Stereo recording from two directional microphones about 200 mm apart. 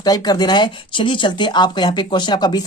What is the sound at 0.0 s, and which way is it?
Speech, 20° left (ahead or behind).